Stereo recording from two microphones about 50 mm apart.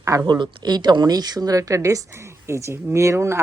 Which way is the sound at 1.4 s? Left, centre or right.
Right.